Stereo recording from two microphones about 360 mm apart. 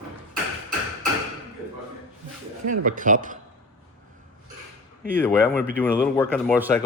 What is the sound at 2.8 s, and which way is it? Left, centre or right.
Speech, right.